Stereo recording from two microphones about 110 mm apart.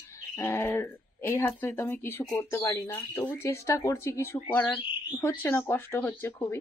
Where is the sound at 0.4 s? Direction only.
25° left (ahead or behind).